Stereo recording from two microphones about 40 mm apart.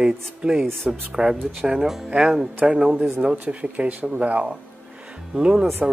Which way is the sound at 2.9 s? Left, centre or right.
Right.